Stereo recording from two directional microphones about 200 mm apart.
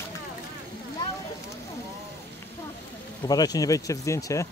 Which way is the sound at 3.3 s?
20° left (ahead or behind).